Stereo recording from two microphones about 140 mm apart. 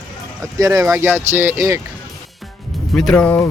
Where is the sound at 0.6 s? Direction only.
25° right (ahead or behind).